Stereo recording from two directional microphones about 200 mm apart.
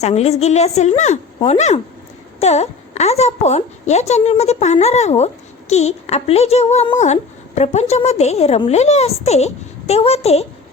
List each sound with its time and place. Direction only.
0.0 s a woman's voice: 30° left (ahead or behind)